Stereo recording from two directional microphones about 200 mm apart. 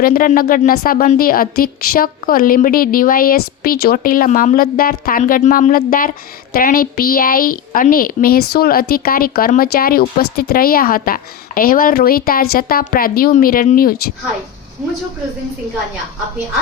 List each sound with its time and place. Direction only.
0.0 s speech: 45° left (ahead or behind)